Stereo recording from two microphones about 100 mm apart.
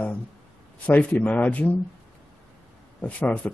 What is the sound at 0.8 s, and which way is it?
Speech, 15° left (ahead or behind).